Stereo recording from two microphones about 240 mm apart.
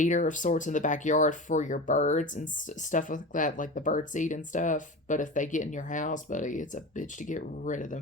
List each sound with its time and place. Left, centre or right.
0.0 s speech: left